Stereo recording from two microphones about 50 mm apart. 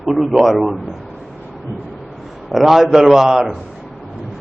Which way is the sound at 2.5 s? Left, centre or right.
Centre.